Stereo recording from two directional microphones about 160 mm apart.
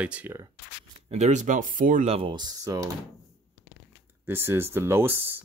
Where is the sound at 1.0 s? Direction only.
45° right (ahead or behind).